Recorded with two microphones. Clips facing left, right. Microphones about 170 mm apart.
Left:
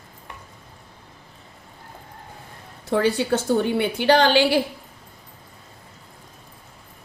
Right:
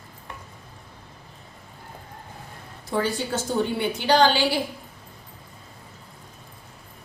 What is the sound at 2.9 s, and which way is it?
A woman's voice, 65° left (ahead or behind).